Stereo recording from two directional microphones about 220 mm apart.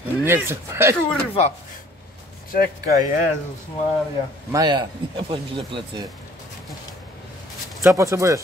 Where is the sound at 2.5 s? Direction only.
40° left (ahead or behind).